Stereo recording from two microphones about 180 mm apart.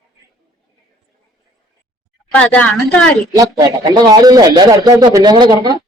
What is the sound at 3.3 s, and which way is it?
Speech, 20° right (ahead or behind).